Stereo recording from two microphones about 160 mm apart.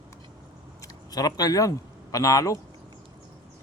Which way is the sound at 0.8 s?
25° left (ahead or behind).